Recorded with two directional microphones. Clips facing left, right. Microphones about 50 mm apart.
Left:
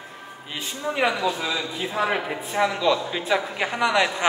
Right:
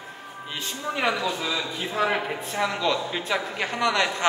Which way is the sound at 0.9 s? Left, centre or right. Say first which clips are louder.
Left 2 dB; centre.